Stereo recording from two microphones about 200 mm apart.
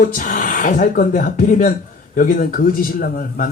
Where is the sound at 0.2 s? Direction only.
40° left (ahead or behind).